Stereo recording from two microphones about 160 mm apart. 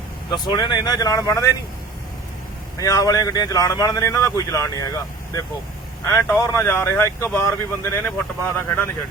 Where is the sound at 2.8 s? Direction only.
20° left (ahead or behind).